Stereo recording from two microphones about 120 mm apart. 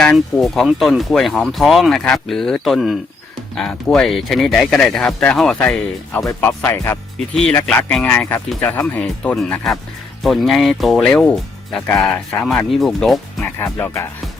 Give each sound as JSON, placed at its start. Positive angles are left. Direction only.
{"t": 0.0, "sound": "speech", "side_deg": 5}
{"t": 9.0, "sound": "speech", "side_deg": 5}
{"t": 12.5, "sound": "speech", "side_deg": 0}
{"t": 13.4, "sound": "speech", "side_deg": 20}